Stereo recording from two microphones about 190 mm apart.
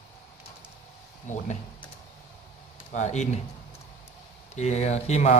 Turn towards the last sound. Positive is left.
turn(degrees=35)  # may be behind; listen again after turning